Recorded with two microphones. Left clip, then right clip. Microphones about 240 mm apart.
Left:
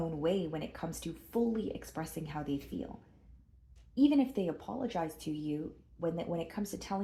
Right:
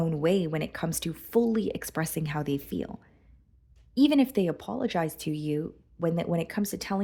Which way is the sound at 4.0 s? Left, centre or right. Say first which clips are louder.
Right 6 dB; right.